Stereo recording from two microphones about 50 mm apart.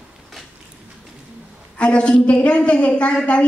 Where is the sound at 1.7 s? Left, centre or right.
Left.